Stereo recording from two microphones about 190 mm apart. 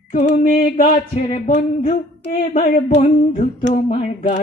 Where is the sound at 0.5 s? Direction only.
50° left (ahead or behind).